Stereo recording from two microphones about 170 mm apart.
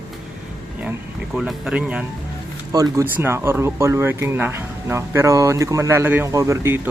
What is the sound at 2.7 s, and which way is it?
Speech, 20° right (ahead or behind).